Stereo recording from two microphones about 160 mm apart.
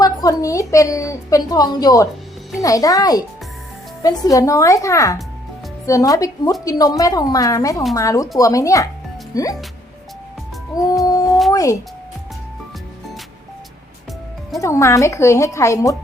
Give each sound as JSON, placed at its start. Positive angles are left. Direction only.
{"t": 0.0, "sound": "a woman's voice", "side_deg": 20}
{"t": 10.8, "sound": "a woman's voice", "side_deg": 20}
{"t": 14.6, "sound": "a woman's voice", "side_deg": 20}